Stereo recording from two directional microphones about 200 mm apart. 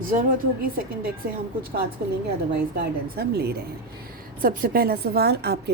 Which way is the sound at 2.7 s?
50° right (ahead or behind).